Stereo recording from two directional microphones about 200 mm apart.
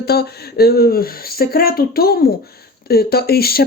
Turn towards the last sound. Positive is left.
turn(degrees=50)  # may be behind; listen again after turning